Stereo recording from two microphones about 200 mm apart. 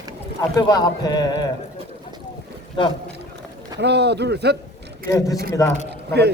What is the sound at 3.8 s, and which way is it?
Speech, 55° right (ahead or behind).